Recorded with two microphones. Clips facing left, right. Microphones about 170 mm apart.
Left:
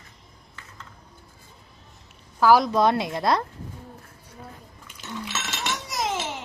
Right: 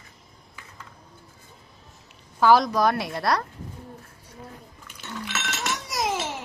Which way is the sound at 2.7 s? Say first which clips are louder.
Left 2 dB; 25° left (ahead or behind).